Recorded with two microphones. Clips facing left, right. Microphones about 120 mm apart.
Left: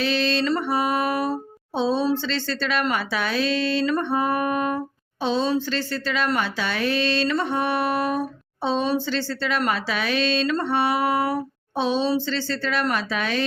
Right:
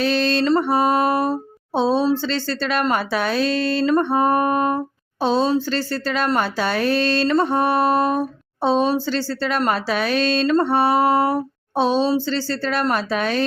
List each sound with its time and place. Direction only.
0.0 s mantra: 40° right (ahead or behind)
2.2 s speech: 40° right (ahead or behind)
8.6 s speech: 40° right (ahead or behind)